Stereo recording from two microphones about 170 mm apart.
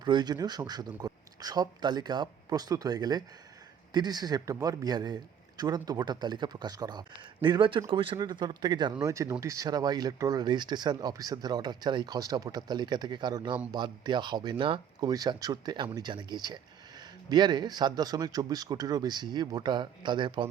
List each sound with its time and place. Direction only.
0.0 s speech: 25° right (ahead or behind)